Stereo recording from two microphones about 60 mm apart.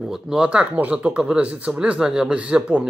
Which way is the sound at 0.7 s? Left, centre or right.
Right.